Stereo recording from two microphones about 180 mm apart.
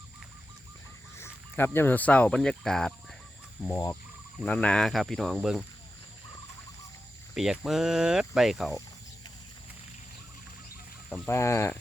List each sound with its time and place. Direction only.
1.1 s speech: 15° left (ahead or behind)
3.6 s speech: 15° left (ahead or behind); by 5.6 s centre (ahead or behind)
7.3 s speech: centre (ahead or behind)
11.3 s speech: 15° left (ahead or behind)